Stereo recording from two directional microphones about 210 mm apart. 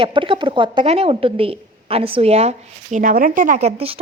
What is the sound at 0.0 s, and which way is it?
A woman's voice, 25° right (ahead or behind).